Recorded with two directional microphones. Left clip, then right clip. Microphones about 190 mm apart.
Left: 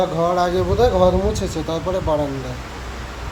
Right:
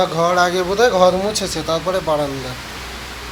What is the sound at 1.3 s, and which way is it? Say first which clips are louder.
Speech: right 2 dB; 10° left (ahead or behind).